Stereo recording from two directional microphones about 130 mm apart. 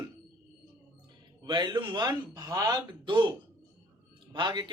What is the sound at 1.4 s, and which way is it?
A man's voice, 35° right (ahead or behind).